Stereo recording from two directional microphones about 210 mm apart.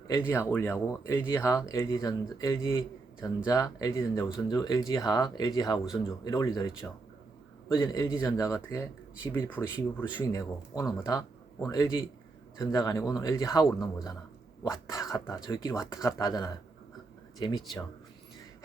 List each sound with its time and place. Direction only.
0.3 s speech: 10° left (ahead or behind)